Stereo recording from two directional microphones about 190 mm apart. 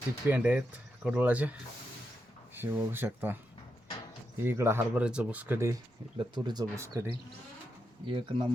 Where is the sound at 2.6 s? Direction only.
10° right (ahead or behind).